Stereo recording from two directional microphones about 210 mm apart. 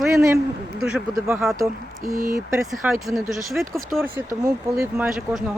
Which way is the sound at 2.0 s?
45° right (ahead or behind).